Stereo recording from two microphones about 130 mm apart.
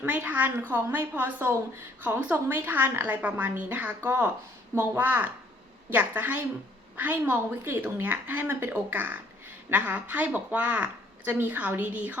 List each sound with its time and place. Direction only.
0.0 s a woman's voice: 10° right (ahead or behind)